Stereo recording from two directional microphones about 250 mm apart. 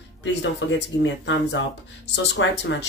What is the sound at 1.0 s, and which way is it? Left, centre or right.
Speech, left.